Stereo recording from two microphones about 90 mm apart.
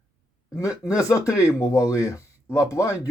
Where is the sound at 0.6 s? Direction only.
35° left (ahead or behind).